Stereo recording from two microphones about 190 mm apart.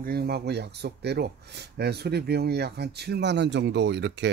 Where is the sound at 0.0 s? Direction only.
55° right (ahead or behind).